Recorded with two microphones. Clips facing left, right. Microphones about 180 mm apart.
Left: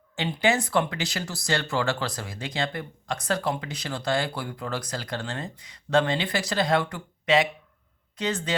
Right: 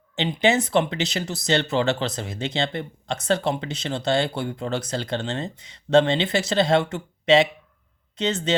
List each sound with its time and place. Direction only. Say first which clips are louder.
0.2 s speech: right 3 dB; 20° right (ahead or behind)